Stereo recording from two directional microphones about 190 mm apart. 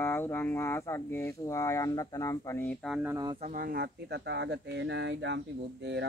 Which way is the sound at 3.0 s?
10° right (ahead or behind).